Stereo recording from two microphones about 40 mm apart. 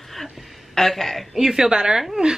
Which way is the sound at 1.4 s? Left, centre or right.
Centre.